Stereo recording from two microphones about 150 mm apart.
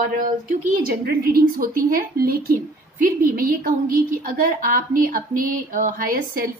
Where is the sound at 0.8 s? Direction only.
85° right.